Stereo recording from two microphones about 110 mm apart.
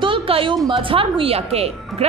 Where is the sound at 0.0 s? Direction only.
50° right (ahead or behind).